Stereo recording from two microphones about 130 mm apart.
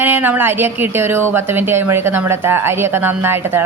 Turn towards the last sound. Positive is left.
turn(degrees=-20)  # may be behind; listen again after turning